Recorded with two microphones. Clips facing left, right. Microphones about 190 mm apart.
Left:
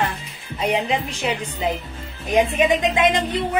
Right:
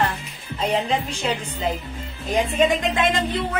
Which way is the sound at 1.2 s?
15° left (ahead or behind).